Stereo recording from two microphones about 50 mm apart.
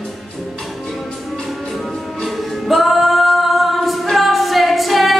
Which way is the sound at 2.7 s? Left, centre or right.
Centre.